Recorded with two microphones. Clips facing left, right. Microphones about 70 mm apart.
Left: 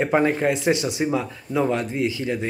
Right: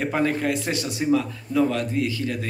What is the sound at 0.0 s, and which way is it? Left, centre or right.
Speech, left.